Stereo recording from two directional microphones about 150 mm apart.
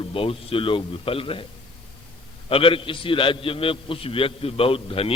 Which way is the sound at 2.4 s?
35° left (ahead or behind).